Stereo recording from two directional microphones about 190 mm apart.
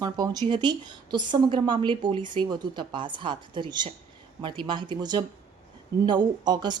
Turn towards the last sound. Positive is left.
turn(degrees=-20)  # may be behind; listen again after turning